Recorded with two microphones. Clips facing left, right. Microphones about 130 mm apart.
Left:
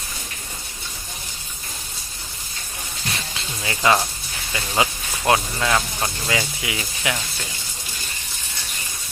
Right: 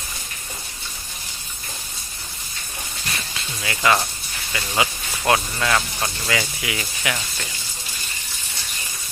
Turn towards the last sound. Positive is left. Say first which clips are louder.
# even
turn(degrees=20)  # may be behind; listen again after turning